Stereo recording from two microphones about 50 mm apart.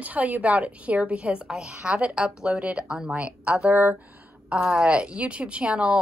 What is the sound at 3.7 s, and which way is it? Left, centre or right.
Speech, right.